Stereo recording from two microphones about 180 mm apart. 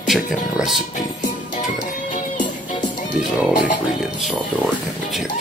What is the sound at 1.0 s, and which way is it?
Music, 45° left (ahead or behind).